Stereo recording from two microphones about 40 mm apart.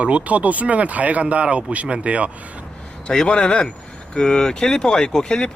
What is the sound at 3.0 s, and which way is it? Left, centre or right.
Speech, centre.